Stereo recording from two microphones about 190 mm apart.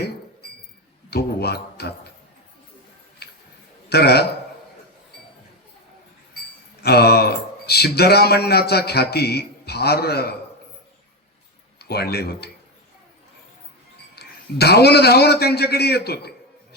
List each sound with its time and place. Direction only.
1.1 s speech: 55° left (ahead or behind)
3.2 s a sound: 55° left (ahead or behind)
3.8 s a man's voice: 55° left (ahead or behind)
6.8 s speech: 55° left (ahead or behind)
11.8 s speech: 55° left (ahead or behind)
14.2 s speech: 60° left (ahead or behind)